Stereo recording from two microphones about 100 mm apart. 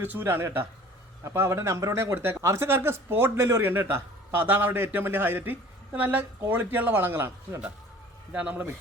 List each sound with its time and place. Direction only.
0.0 s speech: 20° right (ahead or behind)